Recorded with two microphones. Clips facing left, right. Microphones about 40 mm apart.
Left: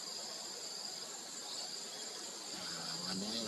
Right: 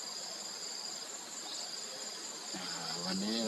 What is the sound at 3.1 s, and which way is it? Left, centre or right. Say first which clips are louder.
Cricket: right 7 dB; right.